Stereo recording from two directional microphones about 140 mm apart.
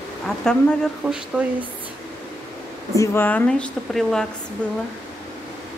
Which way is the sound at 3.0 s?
15° left (ahead or behind).